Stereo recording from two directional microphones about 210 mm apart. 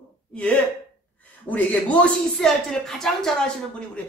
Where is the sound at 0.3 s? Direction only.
5° left (ahead or behind).